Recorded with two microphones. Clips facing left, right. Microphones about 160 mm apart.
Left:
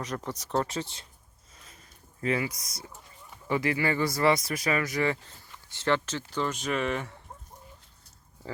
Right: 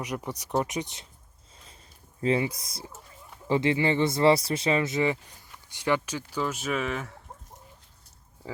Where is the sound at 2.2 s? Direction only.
30° right (ahead or behind); by 7.2 s centre (ahead or behind).